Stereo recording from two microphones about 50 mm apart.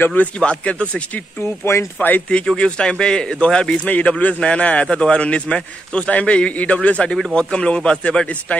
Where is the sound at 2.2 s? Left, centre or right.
Centre.